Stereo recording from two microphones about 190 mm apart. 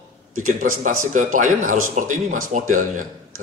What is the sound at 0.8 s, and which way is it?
Speech, 45° right (ahead or behind).